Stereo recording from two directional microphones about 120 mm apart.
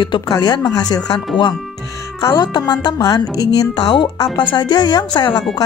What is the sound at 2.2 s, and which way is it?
Speech, 35° left (ahead or behind).